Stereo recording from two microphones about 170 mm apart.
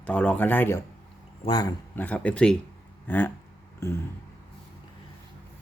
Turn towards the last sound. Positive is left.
turn(degrees=15)  # may be behind; listen again after turning